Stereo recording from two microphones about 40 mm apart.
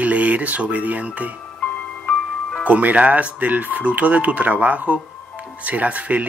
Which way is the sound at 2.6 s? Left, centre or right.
Right.